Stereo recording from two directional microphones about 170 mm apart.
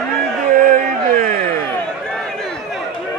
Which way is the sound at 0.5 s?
60° right (ahead or behind).